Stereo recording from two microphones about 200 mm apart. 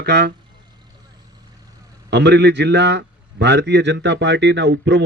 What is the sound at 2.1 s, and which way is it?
A man's voice, 60° right (ahead or behind).